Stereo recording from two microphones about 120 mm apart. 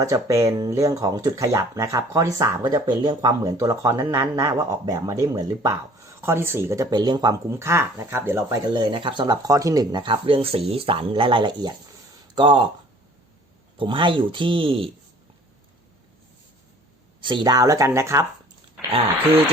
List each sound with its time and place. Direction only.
0.0 s speech: 25° right (ahead or behind)
2.6 s speech: 35° right (ahead or behind)
6.9 s speech: 35° right (ahead or behind)
7.5 s speech: 20° right (ahead or behind)
8.7 s speech: 40° right (ahead or behind)
13.7 s speech: 45° right (ahead or behind)
17.2 s speech: 40° right (ahead or behind); by 18.3 s 25° right (ahead or behind)